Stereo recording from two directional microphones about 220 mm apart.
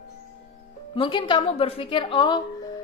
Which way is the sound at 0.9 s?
20° left (ahead or behind).